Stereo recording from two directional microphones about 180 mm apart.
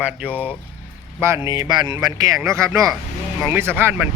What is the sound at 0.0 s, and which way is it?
Speech, 10° right (ahead or behind).